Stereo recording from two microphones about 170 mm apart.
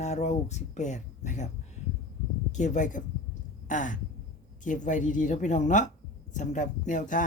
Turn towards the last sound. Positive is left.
turn(degrees=50)  # may be behind; listen again after turning